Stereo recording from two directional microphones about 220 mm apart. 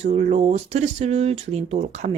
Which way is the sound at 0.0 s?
30° right (ahead or behind).